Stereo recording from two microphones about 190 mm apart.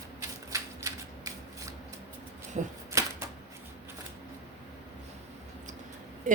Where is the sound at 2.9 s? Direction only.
15° right (ahead or behind).